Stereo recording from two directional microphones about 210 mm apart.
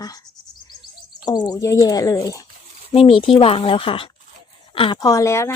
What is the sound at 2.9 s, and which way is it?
Speech, 30° left (ahead or behind).